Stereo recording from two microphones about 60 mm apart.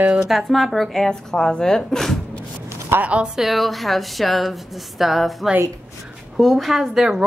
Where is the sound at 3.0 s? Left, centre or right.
Right.